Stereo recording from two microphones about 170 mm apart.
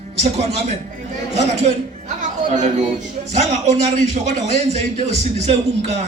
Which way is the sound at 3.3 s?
40° right (ahead or behind).